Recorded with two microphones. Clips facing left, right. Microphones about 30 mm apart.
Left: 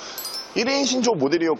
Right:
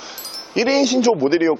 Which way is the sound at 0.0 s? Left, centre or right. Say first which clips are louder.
Even; centre.